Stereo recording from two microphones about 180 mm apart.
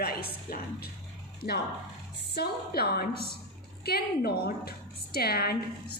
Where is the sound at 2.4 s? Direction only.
60° left (ahead or behind).